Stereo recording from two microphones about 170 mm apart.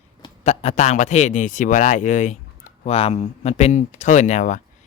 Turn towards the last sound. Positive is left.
turn(degrees=45)  # may be behind; listen again after turning